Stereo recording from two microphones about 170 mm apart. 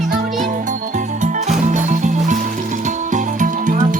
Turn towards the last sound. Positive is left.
turn(degrees=-45)  # may be behind; listen again after turning